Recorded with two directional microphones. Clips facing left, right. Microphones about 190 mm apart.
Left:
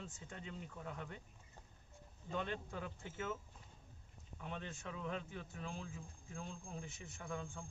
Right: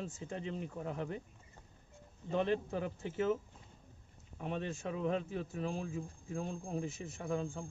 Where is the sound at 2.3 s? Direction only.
30° right (ahead or behind).